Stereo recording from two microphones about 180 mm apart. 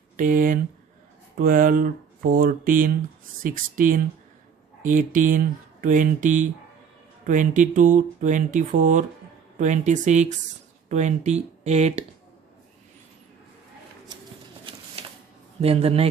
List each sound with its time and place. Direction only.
0.2 s speech: 50° right (ahead or behind)
14.6 s a sound: 30° right (ahead or behind)
15.6 s speech: 35° right (ahead or behind)